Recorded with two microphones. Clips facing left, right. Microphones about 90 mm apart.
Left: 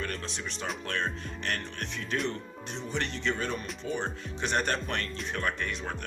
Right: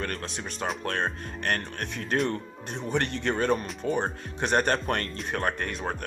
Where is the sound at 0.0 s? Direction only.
50° right (ahead or behind).